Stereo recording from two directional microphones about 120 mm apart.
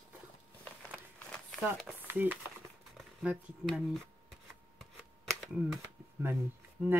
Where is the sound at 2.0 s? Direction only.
15° right (ahead or behind).